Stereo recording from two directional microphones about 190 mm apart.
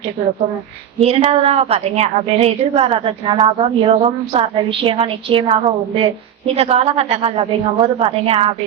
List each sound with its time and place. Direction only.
1.0 s a woman's voice: 30° right (ahead or behind)